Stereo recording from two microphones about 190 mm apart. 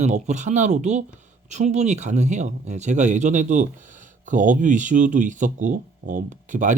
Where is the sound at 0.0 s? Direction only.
40° right (ahead or behind).